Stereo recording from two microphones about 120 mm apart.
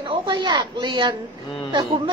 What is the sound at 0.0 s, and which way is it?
A woman's voice, 45° right (ahead or behind).